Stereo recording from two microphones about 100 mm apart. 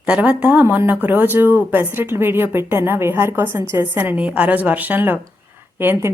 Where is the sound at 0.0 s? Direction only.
10° right (ahead or behind).